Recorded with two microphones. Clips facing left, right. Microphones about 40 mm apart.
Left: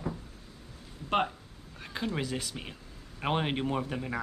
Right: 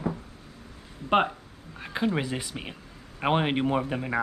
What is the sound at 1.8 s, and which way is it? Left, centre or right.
Speech, right.